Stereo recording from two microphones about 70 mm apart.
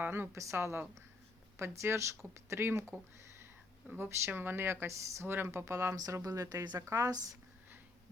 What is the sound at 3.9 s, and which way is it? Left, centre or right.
Speech, right.